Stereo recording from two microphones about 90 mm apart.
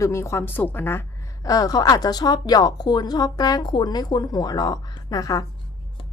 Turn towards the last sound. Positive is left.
turn(degrees=40)  # may be behind; listen again after turning